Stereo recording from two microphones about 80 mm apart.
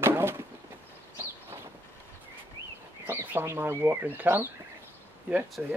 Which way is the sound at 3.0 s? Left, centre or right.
Right.